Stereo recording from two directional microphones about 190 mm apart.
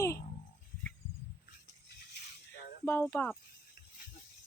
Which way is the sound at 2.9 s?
10° left (ahead or behind).